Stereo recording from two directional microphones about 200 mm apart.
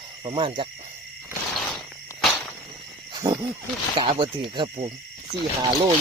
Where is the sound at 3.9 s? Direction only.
25° right (ahead or behind).